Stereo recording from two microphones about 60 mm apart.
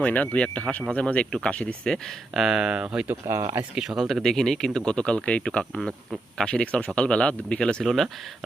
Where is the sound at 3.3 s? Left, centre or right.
Right.